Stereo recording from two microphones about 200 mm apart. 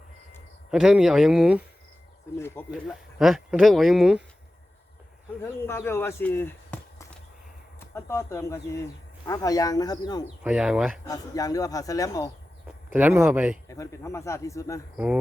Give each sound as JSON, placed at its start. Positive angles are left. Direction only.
{"t": 0.7, "sound": "speech", "side_deg": 0}
{"t": 2.8, "sound": "speech", "side_deg": 0}
{"t": 5.4, "sound": "speech", "side_deg": 10}
{"t": 10.4, "sound": "speech", "side_deg": -5}
{"t": 11.1, "sound": "speech", "side_deg": 15}
{"t": 12.9, "sound": "speech", "side_deg": -10}
{"t": 13.7, "sound": "speech", "side_deg": 15}
{"t": 14.9, "sound": "speech", "side_deg": -5}